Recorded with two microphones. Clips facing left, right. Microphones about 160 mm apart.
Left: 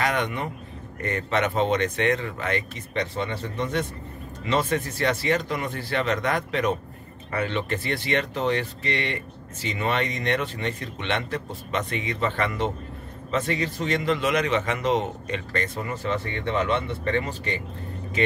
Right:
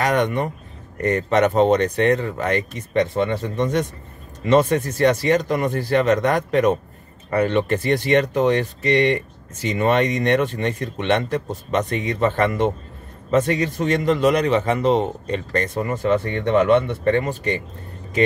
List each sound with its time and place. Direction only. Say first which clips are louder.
0.0 s speech: right 6 dB; 45° right (ahead or behind)